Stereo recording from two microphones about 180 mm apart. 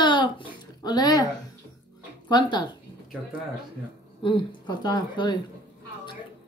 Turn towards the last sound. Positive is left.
turn(degrees=25)  # may be behind; listen again after turning